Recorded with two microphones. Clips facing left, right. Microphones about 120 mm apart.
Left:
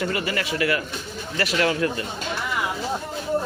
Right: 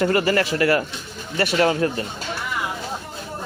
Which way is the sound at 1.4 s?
30° right (ahead or behind).